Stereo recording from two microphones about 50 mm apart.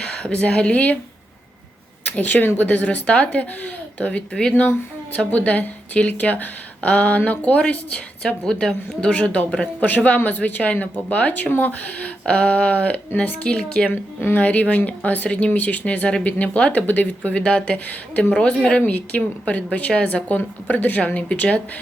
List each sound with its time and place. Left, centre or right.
0.0 s speech: left
2.1 s a woman's voice: left; by 4.6 s centre
5.1 s a woman's voice: left
8.4 s a woman's voice: centre; by 12.0 s left
12.2 s a woman's voice: left
14.2 s a woman's voice: left
14.4 s a woman's voice: left
16.8 s a woman's voice: left
17.3 s a woman's voice: left